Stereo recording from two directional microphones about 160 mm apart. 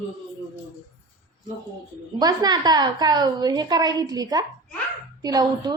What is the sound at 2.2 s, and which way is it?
A woman's voice, 25° right (ahead or behind).